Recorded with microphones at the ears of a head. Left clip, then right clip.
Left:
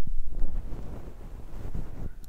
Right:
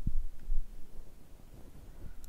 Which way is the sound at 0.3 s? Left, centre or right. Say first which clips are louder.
Left 15 dB; left.